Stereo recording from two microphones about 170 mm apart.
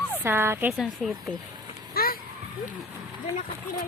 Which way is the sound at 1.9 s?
60° left (ahead or behind).